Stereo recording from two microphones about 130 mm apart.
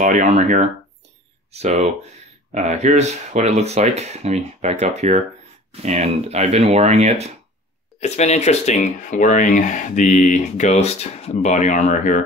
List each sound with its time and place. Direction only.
0.0 s speech: 75° right (ahead or behind)
1.5 s speech: 55° right (ahead or behind)
8.0 s speech: 60° left (ahead or behind)